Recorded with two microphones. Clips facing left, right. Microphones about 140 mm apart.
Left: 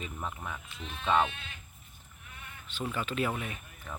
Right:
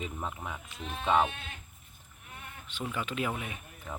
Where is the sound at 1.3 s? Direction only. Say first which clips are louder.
Right 3 dB; 45° right (ahead or behind).